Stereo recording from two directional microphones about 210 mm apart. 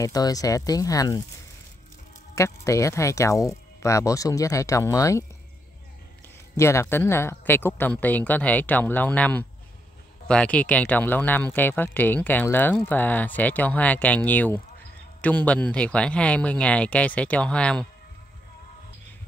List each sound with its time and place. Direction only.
0.0 s speech: 15° left (ahead or behind)
2.3 s speech: 15° left (ahead or behind)
6.5 s speech: 15° left (ahead or behind)